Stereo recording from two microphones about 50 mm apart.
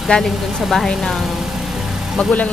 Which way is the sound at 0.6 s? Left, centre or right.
Centre.